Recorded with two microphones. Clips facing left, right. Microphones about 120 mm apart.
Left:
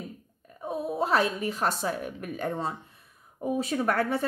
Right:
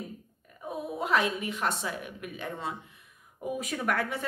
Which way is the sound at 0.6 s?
30° left (ahead or behind).